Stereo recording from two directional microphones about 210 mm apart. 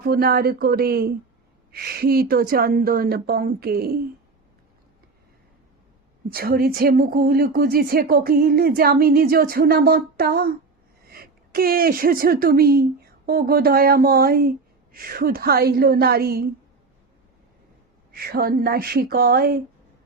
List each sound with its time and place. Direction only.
0.0 s speech: 45° right (ahead or behind)
6.3 s speech: 45° right (ahead or behind)
18.1 s speech: 45° right (ahead or behind)